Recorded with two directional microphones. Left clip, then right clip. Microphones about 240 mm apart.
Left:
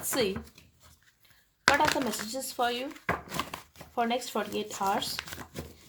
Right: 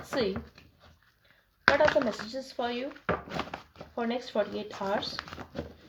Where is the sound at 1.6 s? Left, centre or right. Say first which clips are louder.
Right 2 dB; left.